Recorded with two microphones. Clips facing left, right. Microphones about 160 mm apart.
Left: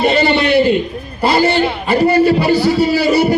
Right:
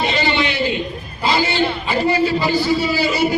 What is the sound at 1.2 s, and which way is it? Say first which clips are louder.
A man's voice: left 5 dB; 55° left (ahead or behind).